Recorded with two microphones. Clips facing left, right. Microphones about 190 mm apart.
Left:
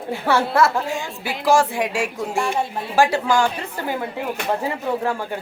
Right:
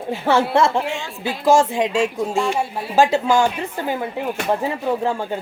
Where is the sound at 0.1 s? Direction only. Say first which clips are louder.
Right 2 dB; 25° right (ahead or behind).